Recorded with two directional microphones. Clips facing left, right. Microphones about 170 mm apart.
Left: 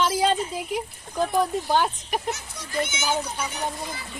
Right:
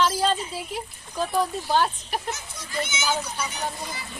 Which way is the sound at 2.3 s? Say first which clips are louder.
Left 2 dB; 60° left (ahead or behind).